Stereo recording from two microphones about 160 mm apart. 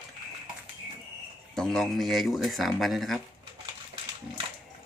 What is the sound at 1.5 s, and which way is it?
Speech, 5° left (ahead or behind).